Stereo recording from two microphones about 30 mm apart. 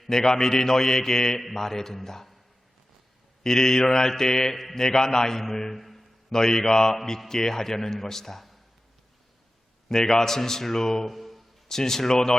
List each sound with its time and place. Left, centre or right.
0.1 s a man's voice: centre
3.4 s a man's voice: centre
9.9 s a man's voice: centre
11.1 s a sound: centre
11.7 s a man's voice: centre